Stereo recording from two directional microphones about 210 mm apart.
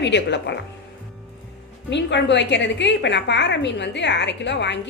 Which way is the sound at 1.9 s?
55° left (ahead or behind).